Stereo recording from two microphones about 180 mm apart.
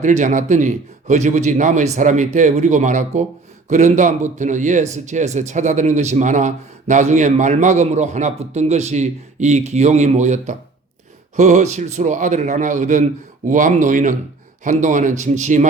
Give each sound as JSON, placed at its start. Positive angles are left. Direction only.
{"t": 0.0, "sound": "speech", "side_deg": -45}